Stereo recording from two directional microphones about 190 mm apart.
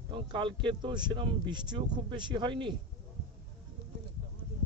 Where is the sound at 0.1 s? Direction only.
25° right (ahead or behind).